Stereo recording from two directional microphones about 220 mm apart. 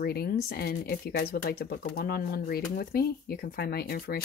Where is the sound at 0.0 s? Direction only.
45° left (ahead or behind).